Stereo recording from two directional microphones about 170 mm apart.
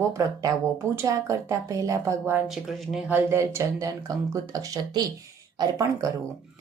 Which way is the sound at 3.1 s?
15° right (ahead or behind).